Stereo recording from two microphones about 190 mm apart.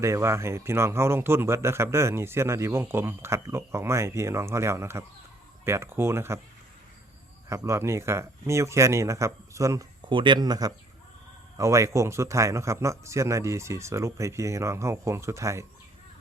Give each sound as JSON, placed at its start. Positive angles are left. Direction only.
{"t": 0.0, "sound": "speech", "side_deg": -15}
{"t": 7.5, "sound": "speech", "side_deg": -15}